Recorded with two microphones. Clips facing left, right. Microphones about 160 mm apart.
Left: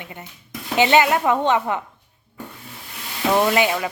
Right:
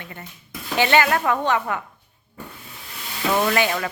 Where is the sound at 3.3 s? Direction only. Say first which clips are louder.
Left 3 dB; 15° left (ahead or behind).